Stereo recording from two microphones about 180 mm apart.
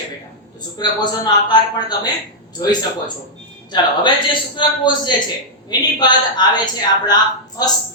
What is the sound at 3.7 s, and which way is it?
A man's voice, 25° left (ahead or behind).